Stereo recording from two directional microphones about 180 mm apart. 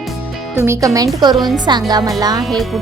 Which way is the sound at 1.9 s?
20° right (ahead or behind).